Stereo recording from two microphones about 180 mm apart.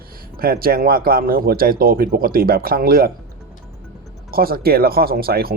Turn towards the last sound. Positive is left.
turn(degrees=-55)  # may be behind; listen again after turning